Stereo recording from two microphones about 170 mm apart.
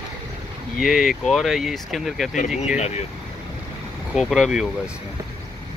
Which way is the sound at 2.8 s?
40° left (ahead or behind).